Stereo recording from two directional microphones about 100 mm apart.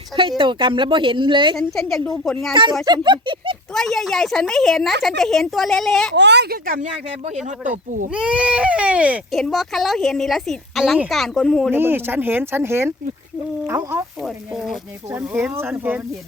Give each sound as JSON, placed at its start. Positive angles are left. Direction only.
{"t": 0.2, "sound": "a woman's voice", "side_deg": -55}
{"t": 1.5, "sound": "a woman's voice", "side_deg": 5}
{"t": 2.5, "sound": "speech", "side_deg": -50}
{"t": 3.8, "sound": "a woman's voice", "side_deg": 5}
{"t": 7.7, "sound": "speech", "side_deg": -10}
{"t": 9.3, "sound": "a woman's voice", "side_deg": 0}
{"t": 11.7, "sound": "speech", "side_deg": -20}
{"t": 14.2, "sound": "a woman's voice", "side_deg": -5}
{"t": 15.3, "sound": "speech", "side_deg": -20}